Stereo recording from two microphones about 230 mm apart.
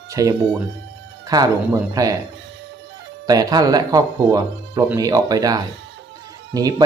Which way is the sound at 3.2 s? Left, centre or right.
Centre.